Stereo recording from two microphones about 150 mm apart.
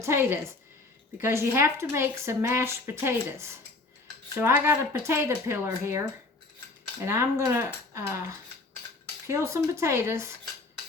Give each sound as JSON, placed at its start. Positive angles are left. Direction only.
{"t": 0.0, "sound": "speech", "side_deg": -15}
{"t": 7.0, "sound": "speech", "side_deg": -20}
{"t": 9.2, "sound": "speech", "side_deg": -20}